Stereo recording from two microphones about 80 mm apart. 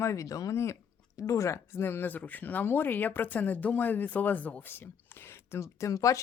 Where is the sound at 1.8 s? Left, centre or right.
Left.